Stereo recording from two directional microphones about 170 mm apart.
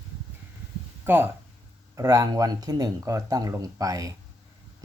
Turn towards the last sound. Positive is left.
turn(degrees=-20)  # may be behind; listen again after turning